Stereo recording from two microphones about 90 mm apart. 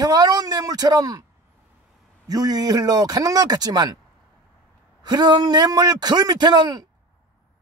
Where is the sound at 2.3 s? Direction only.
45° right (ahead or behind).